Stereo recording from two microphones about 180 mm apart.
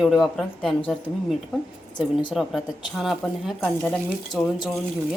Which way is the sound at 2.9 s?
Centre (ahead or behind).